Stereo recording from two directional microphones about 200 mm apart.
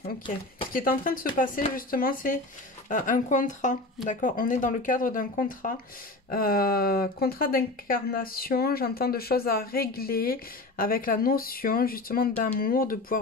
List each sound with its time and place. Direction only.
0.7 s speech: 45° left (ahead or behind)